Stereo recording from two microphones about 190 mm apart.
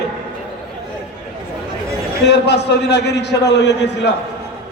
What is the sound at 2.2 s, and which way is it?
A man's voice, 60° left (ahead or behind).